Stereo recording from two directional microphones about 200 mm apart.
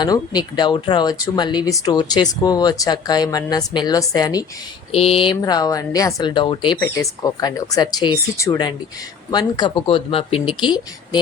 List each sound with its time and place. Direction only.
0.0 s speech: 20° left (ahead or behind)